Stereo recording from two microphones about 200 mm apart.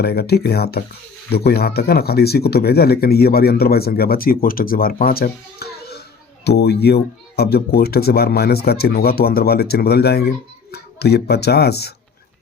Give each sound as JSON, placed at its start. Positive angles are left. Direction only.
{"t": 0.0, "sound": "speech", "side_deg": 50}